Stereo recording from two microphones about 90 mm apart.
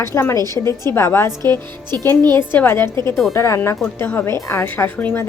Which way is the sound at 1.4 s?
50° right (ahead or behind).